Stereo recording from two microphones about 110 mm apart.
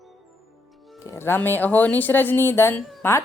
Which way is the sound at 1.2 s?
20° left (ahead or behind).